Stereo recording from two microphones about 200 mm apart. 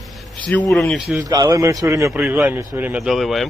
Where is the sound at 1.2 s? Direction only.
20° right (ahead or behind).